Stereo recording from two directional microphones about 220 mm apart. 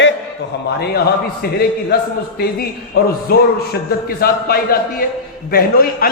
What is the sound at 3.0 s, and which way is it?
A man's voice, 45° left (ahead or behind).